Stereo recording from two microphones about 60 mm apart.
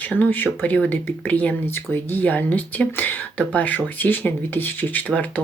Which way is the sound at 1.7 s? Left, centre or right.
Left.